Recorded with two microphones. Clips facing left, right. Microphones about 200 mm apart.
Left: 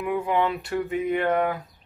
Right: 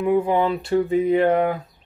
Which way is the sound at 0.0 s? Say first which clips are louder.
Right 5 dB; 30° right (ahead or behind).